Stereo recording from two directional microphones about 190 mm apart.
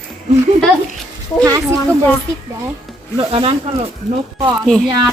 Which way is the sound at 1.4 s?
15° right (ahead or behind).